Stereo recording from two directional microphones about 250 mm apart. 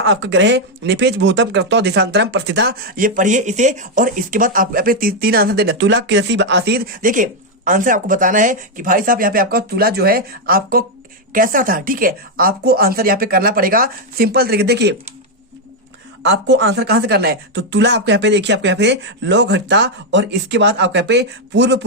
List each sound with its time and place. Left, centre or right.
0.0 s speech: right
16.2 s speech: right